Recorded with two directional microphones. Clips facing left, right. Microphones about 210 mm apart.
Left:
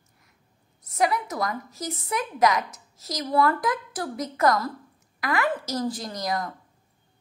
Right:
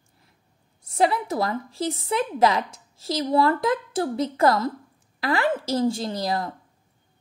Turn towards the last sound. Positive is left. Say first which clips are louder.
# right 3 dB
turn(degrees=-30)  # may be behind; listen again after turning